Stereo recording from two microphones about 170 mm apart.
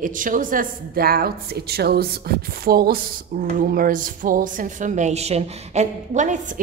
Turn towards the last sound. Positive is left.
turn(degrees=-45)  # may be behind; listen again after turning